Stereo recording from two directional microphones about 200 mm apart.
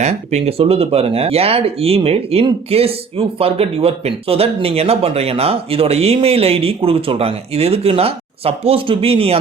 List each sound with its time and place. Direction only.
0.0 s speech: 35° right (ahead or behind)